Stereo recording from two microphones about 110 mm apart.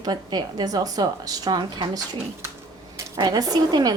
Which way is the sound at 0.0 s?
40° right (ahead or behind).